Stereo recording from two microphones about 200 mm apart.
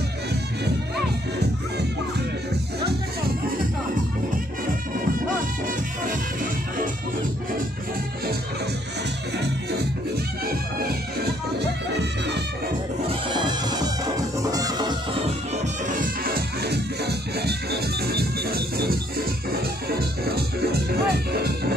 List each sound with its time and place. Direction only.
11.6 s music: 60° right (ahead or behind)
13.3 s bagpipes: 20° right (ahead or behind)
14.5 s music: 20° right (ahead or behind)
16.0 s music: 50° right (ahead or behind)
20.9 s music: 50° right (ahead or behind)